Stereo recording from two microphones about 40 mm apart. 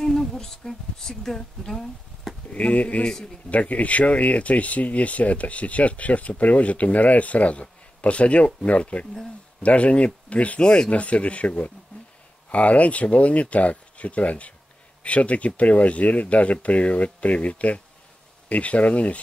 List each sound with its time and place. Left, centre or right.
0.0 s speech: centre
2.5 s speech: left
10.6 s speech: left
10.9 s speech: left